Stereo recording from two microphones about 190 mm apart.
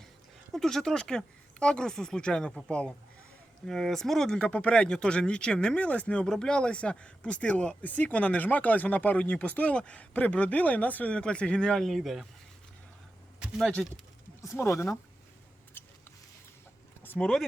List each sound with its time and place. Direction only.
0.5 s speech: centre (ahead or behind)
13.4 s speech: centre (ahead or behind)
14.4 s speech: 15° left (ahead or behind)
15.8 s scissors: 10° left (ahead or behind)
17.0 s a sound: 10° left (ahead or behind)